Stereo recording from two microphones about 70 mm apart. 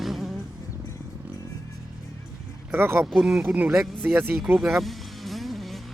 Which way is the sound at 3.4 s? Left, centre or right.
Right.